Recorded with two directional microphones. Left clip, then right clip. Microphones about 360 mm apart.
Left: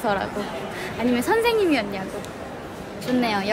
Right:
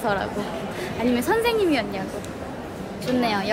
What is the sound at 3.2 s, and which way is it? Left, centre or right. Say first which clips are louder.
Speech: even; centre.